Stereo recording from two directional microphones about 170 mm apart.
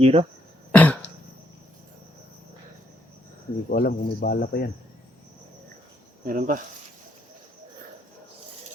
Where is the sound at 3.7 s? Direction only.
65° left (ahead or behind).